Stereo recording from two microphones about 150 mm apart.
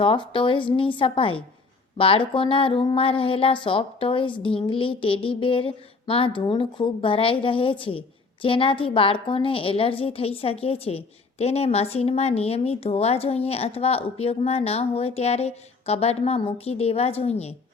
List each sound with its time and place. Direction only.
0.0 s speech: 35° left (ahead or behind)